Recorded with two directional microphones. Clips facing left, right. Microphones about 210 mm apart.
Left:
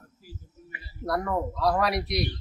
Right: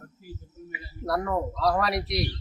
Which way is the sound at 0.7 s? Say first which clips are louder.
Right 1 dB; 5° right (ahead or behind).